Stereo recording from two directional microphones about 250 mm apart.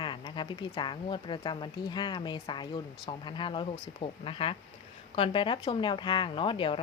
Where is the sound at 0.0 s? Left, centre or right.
Centre.